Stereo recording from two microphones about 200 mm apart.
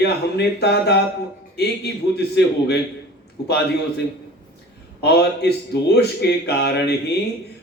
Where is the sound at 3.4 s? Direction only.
55° left (ahead or behind).